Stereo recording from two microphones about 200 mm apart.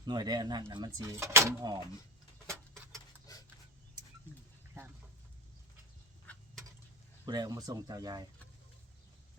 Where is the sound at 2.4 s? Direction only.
15° right (ahead or behind).